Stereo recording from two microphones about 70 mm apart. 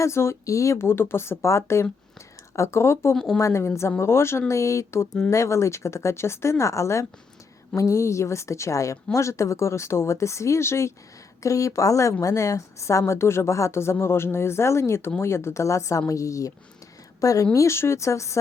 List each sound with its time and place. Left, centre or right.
0.0 s a woman's voice: left